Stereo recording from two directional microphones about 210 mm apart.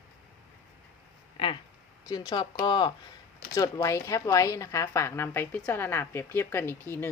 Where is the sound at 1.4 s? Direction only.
25° left (ahead or behind).